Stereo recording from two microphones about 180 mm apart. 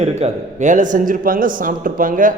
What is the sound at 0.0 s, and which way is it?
A man's voice, 40° right (ahead or behind).